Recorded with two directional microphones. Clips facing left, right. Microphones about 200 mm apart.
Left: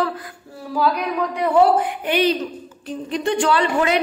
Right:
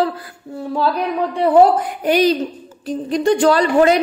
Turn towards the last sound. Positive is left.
turn(degrees=-40)  # may be behind; listen again after turning